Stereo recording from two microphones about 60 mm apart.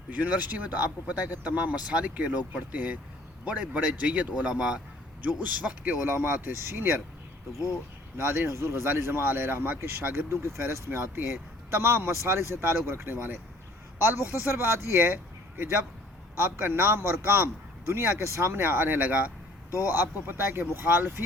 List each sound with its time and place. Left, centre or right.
0.1 s speech: right
8.2 s speech: right
10.1 s a man's voice: right